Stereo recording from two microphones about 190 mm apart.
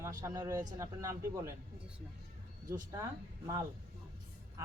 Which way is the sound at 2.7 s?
20° right (ahead or behind).